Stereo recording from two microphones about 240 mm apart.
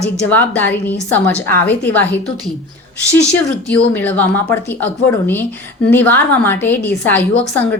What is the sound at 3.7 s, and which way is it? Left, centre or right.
A woman's voice, centre.